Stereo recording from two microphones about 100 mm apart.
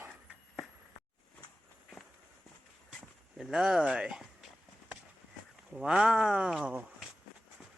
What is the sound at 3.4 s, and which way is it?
Speech, 5° right (ahead or behind).